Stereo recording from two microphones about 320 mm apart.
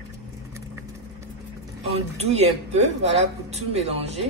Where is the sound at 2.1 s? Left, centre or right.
Centre.